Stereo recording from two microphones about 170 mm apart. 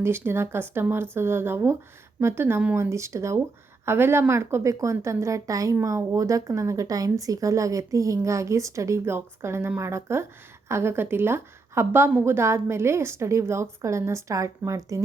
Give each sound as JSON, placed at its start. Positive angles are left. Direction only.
{"t": 0.0, "sound": "a woman's voice", "side_deg": -15}